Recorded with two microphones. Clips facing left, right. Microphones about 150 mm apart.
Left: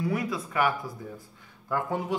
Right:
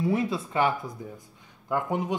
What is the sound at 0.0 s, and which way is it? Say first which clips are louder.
Speech: right 3 dB; 25° right (ahead or behind).